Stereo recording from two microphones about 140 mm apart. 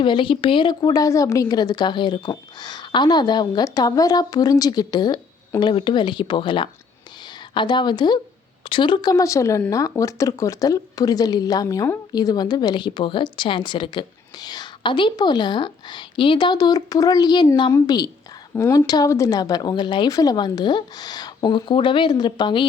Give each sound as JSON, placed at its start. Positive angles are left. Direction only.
{"t": 0.0, "sound": "speech", "side_deg": 35}